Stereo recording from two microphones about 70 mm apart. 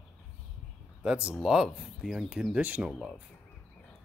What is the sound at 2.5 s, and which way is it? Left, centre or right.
Speech, centre.